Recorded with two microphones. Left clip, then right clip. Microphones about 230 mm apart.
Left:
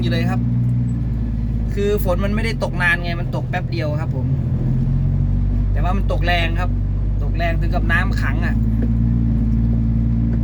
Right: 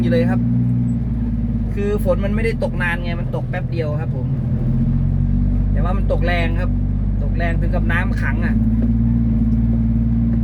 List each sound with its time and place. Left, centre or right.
0.0 s speech: centre
1.8 s speech: left
5.9 s speech: centre